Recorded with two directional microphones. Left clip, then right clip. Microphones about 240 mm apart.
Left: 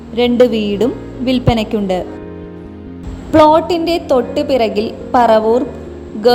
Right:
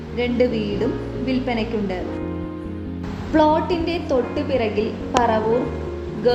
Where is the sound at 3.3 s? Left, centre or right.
Left.